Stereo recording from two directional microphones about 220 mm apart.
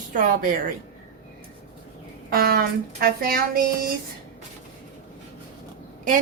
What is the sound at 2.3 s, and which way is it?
Speech, 45° right (ahead or behind).